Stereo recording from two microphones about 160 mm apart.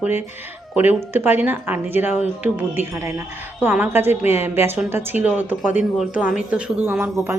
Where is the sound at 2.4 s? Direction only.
15° right (ahead or behind).